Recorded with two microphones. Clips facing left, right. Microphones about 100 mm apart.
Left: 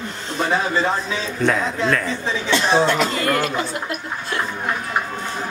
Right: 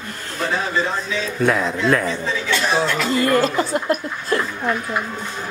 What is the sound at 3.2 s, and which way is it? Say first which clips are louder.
Speech: right 3 dB; 35° right (ahead or behind).